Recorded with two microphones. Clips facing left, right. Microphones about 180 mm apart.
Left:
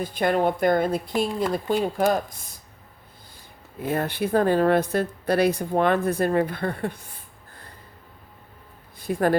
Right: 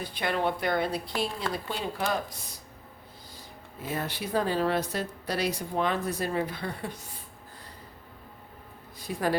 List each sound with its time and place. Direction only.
0.0 s a woman's voice: 45° left (ahead or behind)
3.8 s speech: 55° left (ahead or behind)
9.0 s a sound: 55° left (ahead or behind)